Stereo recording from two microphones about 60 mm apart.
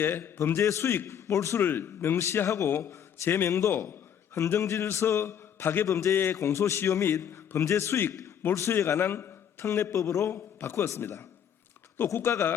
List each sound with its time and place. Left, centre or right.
0.0 s a man's voice: left
1.5 s a man's voice: left
3.7 s a man's voice: left
5.9 s a man's voice: left
9.6 s a man's voice: left